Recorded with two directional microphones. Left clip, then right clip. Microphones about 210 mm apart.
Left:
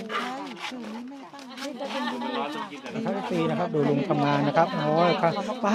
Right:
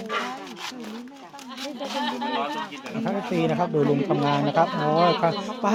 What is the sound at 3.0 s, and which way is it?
Speech, 30° right (ahead or behind).